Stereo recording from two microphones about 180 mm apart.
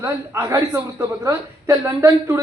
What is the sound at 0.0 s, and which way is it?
A woman's voice, 15° right (ahead or behind).